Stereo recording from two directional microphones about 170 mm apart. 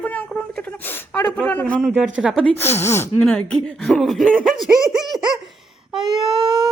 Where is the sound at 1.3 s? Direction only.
10° left (ahead or behind).